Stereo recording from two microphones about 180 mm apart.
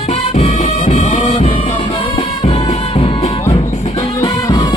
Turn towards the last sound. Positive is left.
turn(degrees=20)  # may be behind; listen again after turning